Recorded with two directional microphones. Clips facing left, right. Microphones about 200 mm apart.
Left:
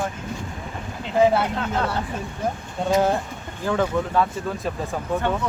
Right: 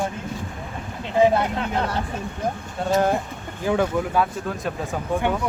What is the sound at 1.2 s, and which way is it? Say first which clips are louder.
Speech: even; 15° right (ahead or behind).